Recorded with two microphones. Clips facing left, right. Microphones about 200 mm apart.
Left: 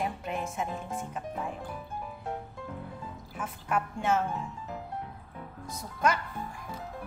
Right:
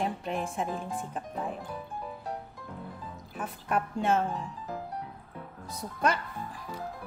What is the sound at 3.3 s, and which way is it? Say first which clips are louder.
Speech: right 1 dB; 35° right (ahead or behind).